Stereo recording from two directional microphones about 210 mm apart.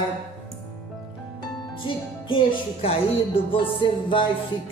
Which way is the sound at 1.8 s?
25° left (ahead or behind).